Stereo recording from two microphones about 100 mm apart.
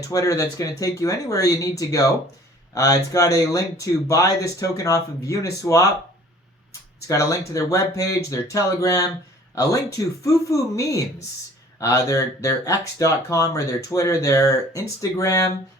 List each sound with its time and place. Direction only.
0.0 s speech: 35° left (ahead or behind)
7.1 s speech: 35° left (ahead or behind)
10.2 s speech: 35° left (ahead or behind)